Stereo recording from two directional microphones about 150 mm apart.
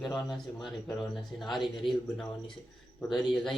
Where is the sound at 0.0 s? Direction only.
Centre (ahead or behind).